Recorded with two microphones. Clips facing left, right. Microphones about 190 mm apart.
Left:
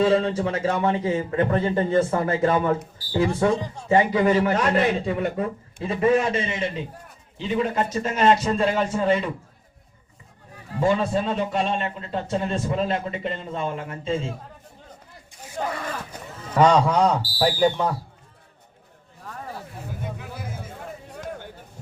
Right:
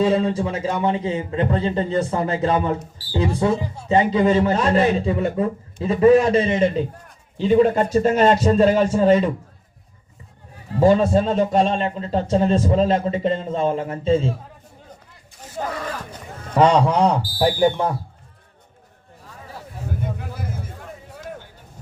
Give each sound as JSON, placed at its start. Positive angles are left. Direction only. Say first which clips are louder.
{"t": 0.0, "sound": "a man's voice", "louder": "right 1 dB", "side_deg": -15}
{"t": 3.5, "sound": "speech", "louder": "right 2 dB", "side_deg": -10}
{"t": 3.8, "sound": "a man's voice", "louder": "right 2 dB", "side_deg": -20}
{"t": 10.8, "sound": "a man's voice", "louder": "right 6 dB", "side_deg": -40}
{"t": 15.6, "sound": "speech", "louder": "right 1 dB", "side_deg": -5}
{"t": 16.6, "sound": "a man's voice", "louder": "right 2 dB", "side_deg": -30}
{"t": 17.6, "sound": "speech", "louder": "right 2 dB", "side_deg": -15}
{"t": 20.1, "sound": "a sound", "louder": "right 4 dB", "side_deg": -55}